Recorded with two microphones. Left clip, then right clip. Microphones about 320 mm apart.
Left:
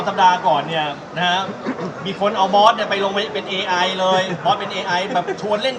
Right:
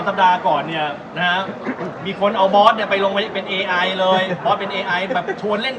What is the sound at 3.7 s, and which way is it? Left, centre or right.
A man's voice, left.